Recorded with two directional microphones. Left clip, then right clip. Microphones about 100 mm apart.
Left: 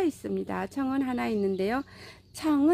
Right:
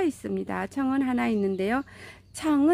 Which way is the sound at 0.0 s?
20° right (ahead or behind).